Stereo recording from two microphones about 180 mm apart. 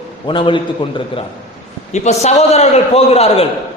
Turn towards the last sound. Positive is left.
turn(degrees=35)  # may be behind; listen again after turning